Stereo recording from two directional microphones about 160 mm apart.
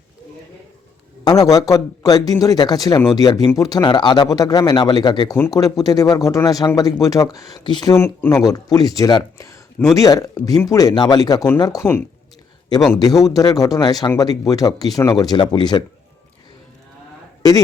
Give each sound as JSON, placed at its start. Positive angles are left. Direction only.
{"t": 1.2, "sound": "speech", "side_deg": 25}
{"t": 7.9, "sound": "speech", "side_deg": 15}